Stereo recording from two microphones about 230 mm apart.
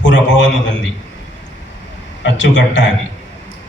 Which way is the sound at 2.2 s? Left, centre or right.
Left.